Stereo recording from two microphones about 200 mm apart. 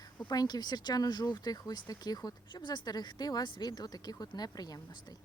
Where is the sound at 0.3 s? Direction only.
20° left (ahead or behind).